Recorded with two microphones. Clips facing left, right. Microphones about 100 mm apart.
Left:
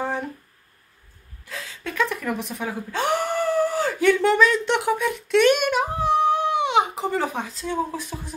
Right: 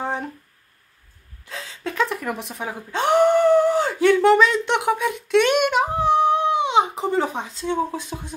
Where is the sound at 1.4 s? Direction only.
25° right (ahead or behind).